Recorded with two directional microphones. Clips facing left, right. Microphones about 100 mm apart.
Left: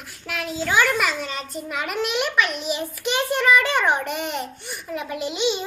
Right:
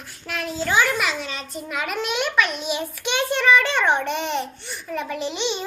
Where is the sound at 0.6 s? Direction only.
Centre (ahead or behind).